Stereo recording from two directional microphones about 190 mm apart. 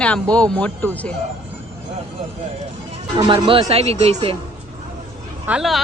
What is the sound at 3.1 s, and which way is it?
Speech, 30° right (ahead or behind).